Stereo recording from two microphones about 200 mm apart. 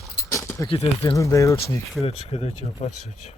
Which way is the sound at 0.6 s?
30° left (ahead or behind).